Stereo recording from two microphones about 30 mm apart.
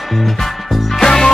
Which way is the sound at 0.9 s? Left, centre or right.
Centre.